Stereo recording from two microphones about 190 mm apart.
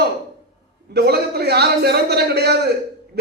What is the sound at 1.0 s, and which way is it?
A man's voice, 55° right (ahead or behind).